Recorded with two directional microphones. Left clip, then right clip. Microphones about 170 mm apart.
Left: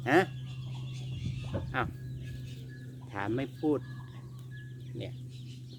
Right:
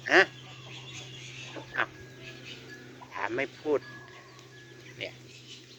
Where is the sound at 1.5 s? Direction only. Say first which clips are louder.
Left 3 dB; 15° right (ahead or behind).